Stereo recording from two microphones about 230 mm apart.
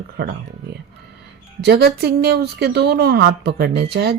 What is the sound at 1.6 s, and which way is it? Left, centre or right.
Speech, right.